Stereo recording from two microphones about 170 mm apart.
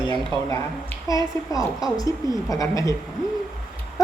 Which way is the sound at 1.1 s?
20° left (ahead or behind).